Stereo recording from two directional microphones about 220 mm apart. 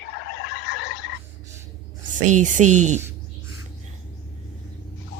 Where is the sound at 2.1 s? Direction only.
35° right (ahead or behind).